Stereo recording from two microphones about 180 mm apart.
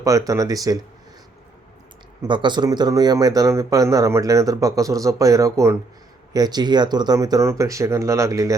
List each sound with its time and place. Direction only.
0.0 s speech: 20° right (ahead or behind)
2.2 s speech: 25° right (ahead or behind)